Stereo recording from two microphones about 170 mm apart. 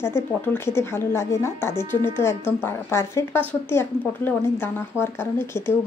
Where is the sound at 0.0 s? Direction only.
15° left (ahead or behind).